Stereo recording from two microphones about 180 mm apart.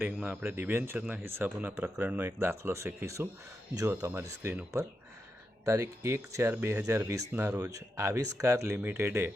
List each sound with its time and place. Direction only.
0.0 s speech: 10° right (ahead or behind)